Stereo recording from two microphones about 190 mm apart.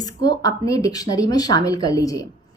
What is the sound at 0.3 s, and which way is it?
A woman's voice, 20° left (ahead or behind).